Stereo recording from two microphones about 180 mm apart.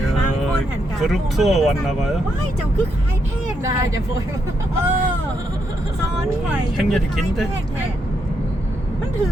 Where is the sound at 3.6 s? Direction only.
15° right (ahead or behind).